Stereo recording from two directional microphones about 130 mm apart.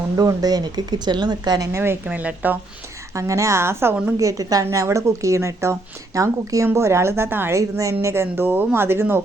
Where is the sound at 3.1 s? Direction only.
25° right (ahead or behind).